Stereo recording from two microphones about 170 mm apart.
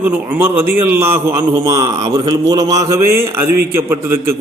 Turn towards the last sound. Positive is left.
turn(degrees=-15)  # may be behind; listen again after turning